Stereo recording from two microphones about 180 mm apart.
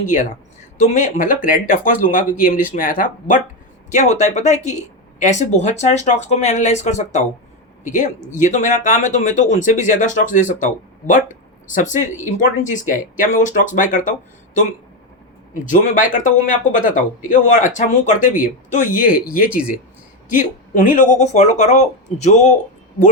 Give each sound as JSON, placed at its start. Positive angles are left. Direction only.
{"t": 0.0, "sound": "speech", "side_deg": 45}
{"t": 15.5, "sound": "speech", "side_deg": 45}